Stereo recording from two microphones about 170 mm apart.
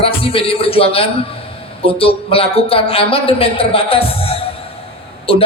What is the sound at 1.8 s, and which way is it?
A man's voice, 35° left (ahead or behind).